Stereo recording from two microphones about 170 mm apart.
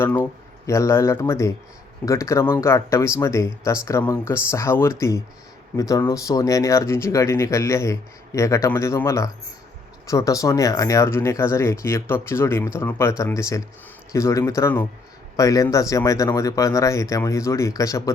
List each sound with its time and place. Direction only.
0.0 s speech: 10° left (ahead or behind)